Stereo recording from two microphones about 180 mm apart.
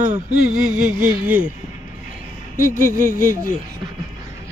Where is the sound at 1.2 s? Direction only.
10° right (ahead or behind).